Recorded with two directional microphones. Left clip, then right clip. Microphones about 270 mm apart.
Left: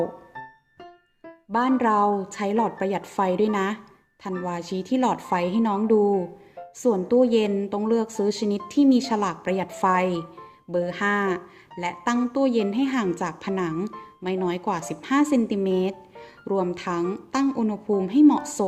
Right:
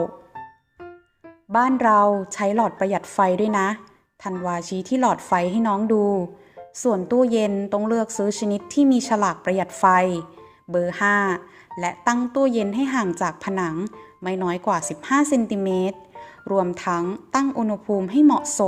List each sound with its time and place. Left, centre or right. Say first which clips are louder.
1.5 s speech: right 4 dB; centre